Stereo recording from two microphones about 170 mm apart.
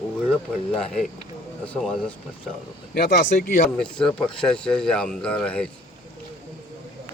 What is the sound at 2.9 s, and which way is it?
Speech, 60° left (ahead or behind).